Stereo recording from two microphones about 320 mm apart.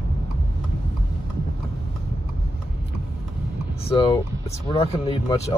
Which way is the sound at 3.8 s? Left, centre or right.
Centre.